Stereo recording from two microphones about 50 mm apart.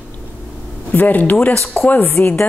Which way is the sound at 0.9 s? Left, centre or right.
Left.